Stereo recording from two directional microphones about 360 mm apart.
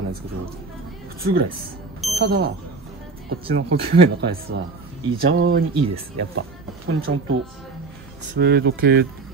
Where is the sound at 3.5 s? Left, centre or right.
Right.